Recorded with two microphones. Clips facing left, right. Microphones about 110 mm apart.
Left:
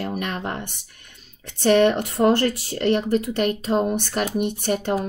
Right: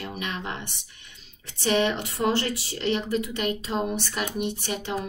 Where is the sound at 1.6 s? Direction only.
55° left (ahead or behind).